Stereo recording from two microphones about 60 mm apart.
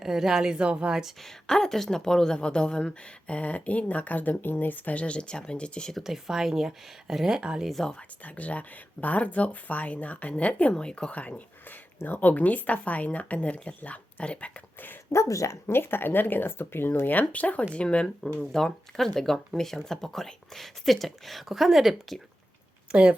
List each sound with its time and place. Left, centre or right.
0.0 s speech: centre
1.2 s a woman's voice: centre
6.0 s speech: centre
7.7 s a woman's voice: centre
8.2 s speech: left
15.1 s speech: left
17.2 s a woman's voice: left; by 22.2 s centre
22.9 s speech: centre